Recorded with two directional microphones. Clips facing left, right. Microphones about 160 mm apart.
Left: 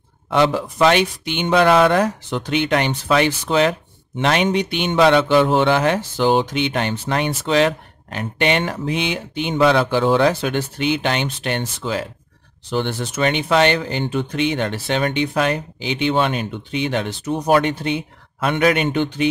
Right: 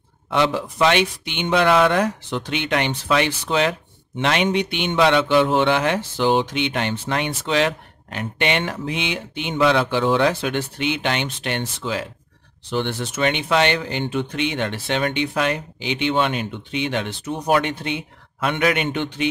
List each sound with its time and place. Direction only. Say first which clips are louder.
0.3 s speech: left 3 dB; 45° left (ahead or behind)